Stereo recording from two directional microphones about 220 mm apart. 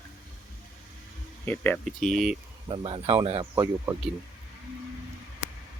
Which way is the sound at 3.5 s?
15° right (ahead or behind).